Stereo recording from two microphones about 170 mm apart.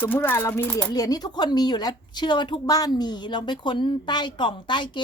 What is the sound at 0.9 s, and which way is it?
A woman's voice, 20° left (ahead or behind).